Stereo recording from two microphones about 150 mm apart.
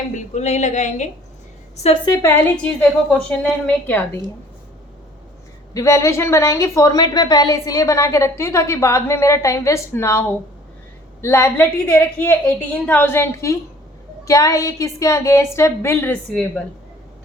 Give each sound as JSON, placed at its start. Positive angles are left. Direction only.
{"t": 0.2, "sound": "a woman's voice", "side_deg": 50}
{"t": 2.3, "sound": "a woman's voice", "side_deg": 10}
{"t": 5.7, "sound": "a woman's voice", "side_deg": 20}